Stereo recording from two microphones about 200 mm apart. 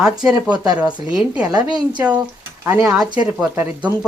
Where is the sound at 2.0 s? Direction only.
5° right (ahead or behind).